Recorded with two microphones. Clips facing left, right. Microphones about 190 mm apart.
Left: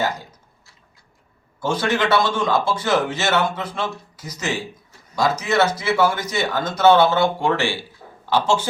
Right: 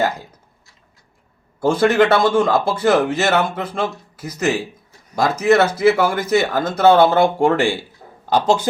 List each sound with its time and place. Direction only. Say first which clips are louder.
1.6 s a man's voice: right 7 dB; 55° right (ahead or behind)